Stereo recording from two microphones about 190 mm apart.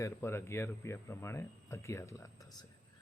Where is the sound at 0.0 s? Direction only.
15° left (ahead or behind).